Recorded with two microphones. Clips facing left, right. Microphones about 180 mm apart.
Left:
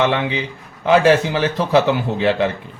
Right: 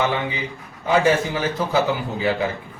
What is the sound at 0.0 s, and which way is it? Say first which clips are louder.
A man's voice: left 4 dB; 75° left (ahead or behind).